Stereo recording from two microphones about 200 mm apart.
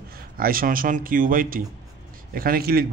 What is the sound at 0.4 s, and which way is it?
Speech, 45° right (ahead or behind).